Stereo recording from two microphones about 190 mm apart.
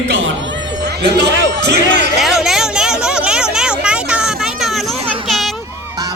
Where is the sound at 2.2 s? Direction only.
Centre (ahead or behind).